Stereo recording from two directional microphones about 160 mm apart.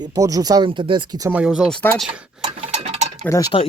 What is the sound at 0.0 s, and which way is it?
Speech, 25° right (ahead or behind).